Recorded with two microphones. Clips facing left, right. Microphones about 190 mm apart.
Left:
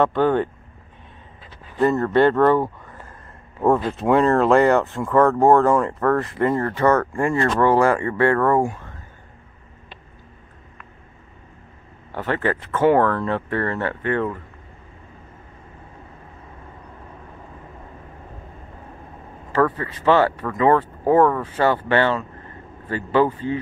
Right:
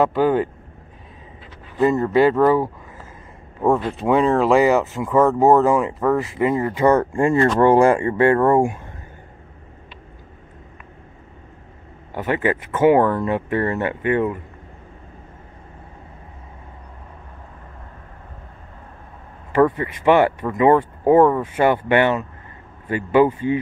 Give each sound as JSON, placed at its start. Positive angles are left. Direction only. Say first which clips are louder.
{"t": 0.0, "sound": "speech", "louder": "right 1 dB", "side_deg": -5}
{"t": 1.8, "sound": "speech", "louder": "right 1 dB", "side_deg": -10}
{"t": 3.9, "sound": "speech", "louder": "even", "side_deg": 0}
{"t": 12.1, "sound": "speech", "louder": "right 2 dB", "side_deg": -15}
{"t": 19.5, "sound": "speech", "louder": "right 3 dB", "side_deg": -15}